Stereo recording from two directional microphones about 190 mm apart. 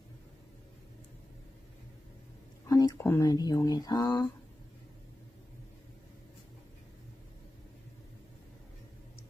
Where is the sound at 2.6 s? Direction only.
15° left (ahead or behind).